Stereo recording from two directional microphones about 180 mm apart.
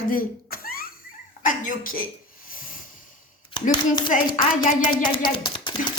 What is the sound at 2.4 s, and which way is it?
Hiss, 50° left (ahead or behind).